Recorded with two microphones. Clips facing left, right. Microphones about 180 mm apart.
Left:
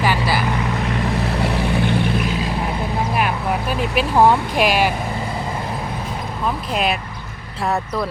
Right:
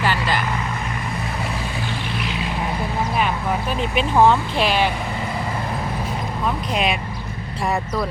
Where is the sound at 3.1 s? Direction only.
5° left (ahead or behind).